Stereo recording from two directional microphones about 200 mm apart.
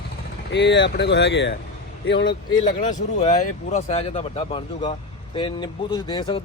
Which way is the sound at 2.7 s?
40° left (ahead or behind).